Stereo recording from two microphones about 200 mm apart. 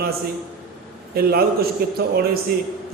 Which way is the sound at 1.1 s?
50° right (ahead or behind).